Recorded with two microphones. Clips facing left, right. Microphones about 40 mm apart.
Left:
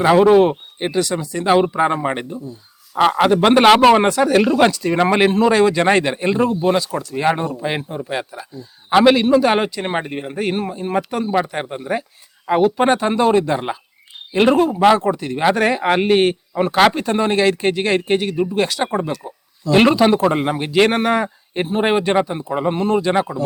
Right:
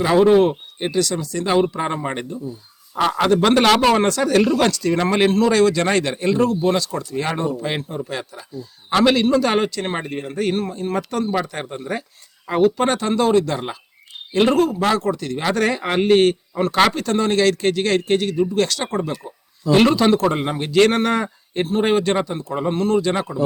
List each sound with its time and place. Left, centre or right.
0.0 s a man's voice: left